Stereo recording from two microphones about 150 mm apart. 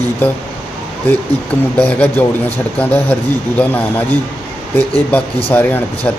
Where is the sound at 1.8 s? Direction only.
10° left (ahead or behind).